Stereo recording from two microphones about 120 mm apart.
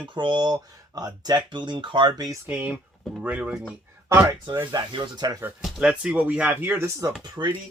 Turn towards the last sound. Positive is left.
turn(degrees=-40)  # may be behind; listen again after turning